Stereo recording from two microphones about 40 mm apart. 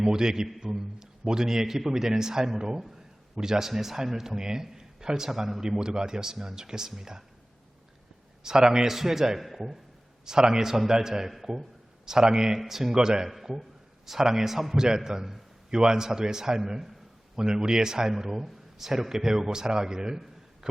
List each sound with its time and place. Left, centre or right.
0.0 s a man's voice: centre
8.4 s a man's voice: centre
13.3 s a man's voice: centre